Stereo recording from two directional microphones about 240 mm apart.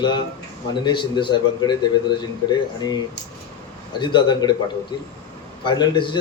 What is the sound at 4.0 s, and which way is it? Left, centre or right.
A man's voice, centre.